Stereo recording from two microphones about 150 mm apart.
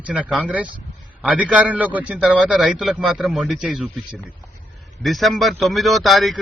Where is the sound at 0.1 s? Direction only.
5° right (ahead or behind).